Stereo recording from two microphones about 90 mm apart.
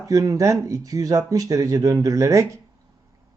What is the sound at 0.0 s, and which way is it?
Speech, 40° right (ahead or behind).